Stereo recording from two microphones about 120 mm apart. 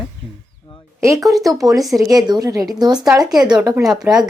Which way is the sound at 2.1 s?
30° right (ahead or behind).